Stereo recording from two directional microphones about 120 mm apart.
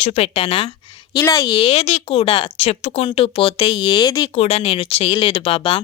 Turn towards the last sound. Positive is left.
turn(degrees=50)  # may be behind; listen again after turning